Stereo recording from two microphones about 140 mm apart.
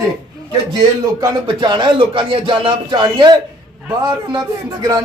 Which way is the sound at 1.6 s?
35° right (ahead or behind).